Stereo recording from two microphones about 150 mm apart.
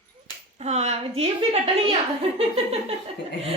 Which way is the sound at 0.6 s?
45° right (ahead or behind).